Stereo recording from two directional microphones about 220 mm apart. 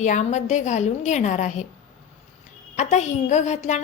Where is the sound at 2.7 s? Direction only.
35° left (ahead or behind).